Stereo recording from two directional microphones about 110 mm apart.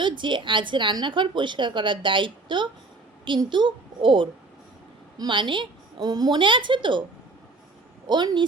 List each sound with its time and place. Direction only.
0.0 s a woman's voice: 45° right (ahead or behind)
8.0 s a woman's voice: 40° right (ahead or behind)